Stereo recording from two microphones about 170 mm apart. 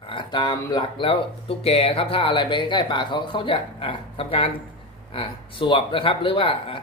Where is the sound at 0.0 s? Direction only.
30° left (ahead or behind).